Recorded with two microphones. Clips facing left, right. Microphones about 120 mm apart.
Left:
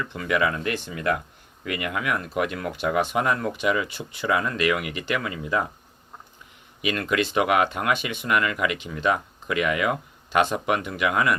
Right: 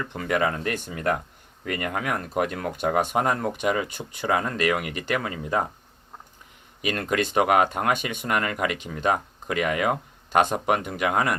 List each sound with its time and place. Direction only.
0.0 s speech: 45° right (ahead or behind)
6.8 s speech: 40° right (ahead or behind)